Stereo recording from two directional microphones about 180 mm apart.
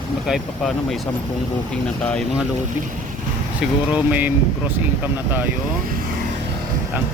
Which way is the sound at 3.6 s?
5° right (ahead or behind).